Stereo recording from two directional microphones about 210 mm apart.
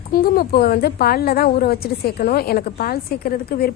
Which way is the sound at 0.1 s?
45° left (ahead or behind).